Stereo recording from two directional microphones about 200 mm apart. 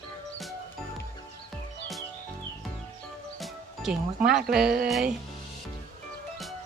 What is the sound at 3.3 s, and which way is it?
Music, centre (ahead or behind).